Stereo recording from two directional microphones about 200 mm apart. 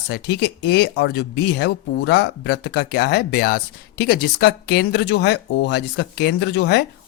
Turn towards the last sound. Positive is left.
turn(degrees=60)  # may be behind; listen again after turning